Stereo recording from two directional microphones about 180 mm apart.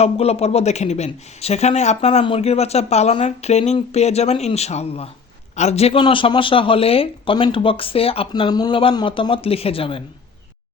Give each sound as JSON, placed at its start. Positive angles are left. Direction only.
{"t": 0.0, "sound": "a man's voice", "side_deg": 35}